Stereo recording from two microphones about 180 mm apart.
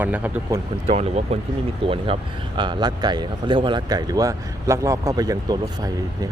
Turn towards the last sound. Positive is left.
turn(degrees=-20)  # may be behind; listen again after turning